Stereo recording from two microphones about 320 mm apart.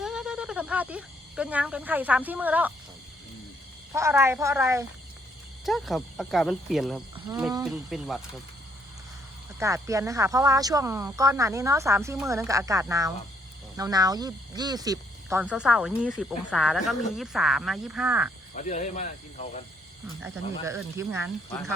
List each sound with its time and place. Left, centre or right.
0.0 s speech: centre
3.9 s speech: centre
9.6 s speech: centre
18.5 s speech: left
20.7 s speech: centre